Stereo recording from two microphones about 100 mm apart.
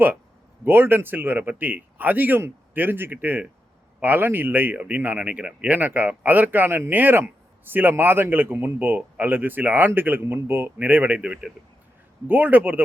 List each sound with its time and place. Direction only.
0.6 s speech: 20° right (ahead or behind)